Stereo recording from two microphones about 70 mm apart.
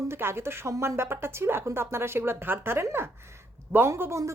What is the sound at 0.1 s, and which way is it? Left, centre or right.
Speech, right.